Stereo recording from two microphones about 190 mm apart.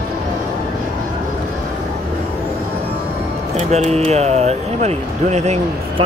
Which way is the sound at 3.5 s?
35° right (ahead or behind).